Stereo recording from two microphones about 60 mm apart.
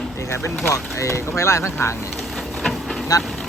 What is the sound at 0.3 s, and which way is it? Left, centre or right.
Speech, left.